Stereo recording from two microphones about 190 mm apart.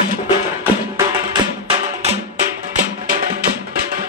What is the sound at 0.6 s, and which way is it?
Music, 15° right (ahead or behind).